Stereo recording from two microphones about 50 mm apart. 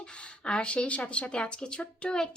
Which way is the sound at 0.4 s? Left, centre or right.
Left.